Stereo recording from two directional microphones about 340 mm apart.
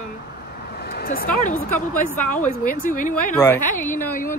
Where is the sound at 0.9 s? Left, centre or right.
Left.